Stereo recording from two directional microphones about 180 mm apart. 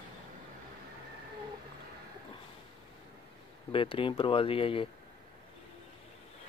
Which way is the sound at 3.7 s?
30° left (ahead or behind).